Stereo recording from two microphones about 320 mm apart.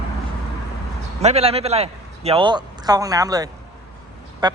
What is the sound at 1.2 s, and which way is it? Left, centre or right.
A man's voice, centre.